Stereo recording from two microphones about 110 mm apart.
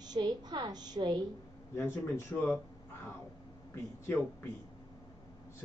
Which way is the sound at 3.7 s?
20° left (ahead or behind).